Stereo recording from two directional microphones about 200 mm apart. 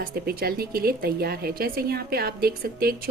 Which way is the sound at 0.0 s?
50° right (ahead or behind).